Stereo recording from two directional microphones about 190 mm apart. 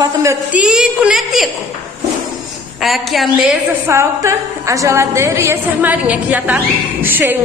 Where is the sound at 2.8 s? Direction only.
Centre (ahead or behind).